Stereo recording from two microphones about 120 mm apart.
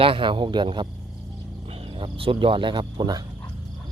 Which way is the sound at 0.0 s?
45° right (ahead or behind).